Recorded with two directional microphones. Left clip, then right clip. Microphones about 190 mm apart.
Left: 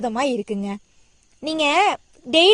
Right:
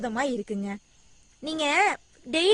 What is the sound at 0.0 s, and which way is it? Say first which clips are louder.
A woman's voice: left 6 dB; 30° left (ahead or behind).